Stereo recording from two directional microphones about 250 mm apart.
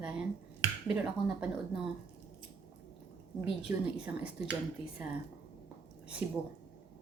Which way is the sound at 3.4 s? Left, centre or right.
Left.